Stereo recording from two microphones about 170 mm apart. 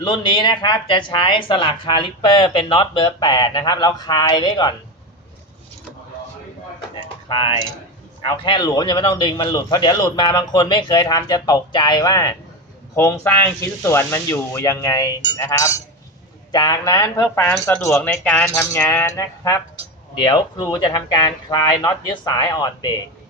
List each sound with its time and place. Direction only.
0.0 s speech: 25° left (ahead or behind)
7.3 s speech: 25° left (ahead or behind)